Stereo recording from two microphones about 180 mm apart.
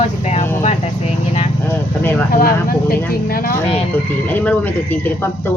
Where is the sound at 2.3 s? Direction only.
55° left (ahead or behind).